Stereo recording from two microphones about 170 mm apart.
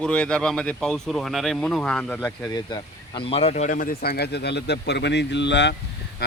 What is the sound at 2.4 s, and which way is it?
Speech, 25° left (ahead or behind).